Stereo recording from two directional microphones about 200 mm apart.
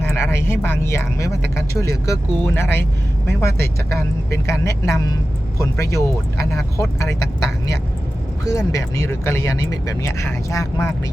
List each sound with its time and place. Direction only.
0.0 s speech: 10° left (ahead or behind)
4.3 s speech: 15° left (ahead or behind)
8.4 s speech: 15° left (ahead or behind)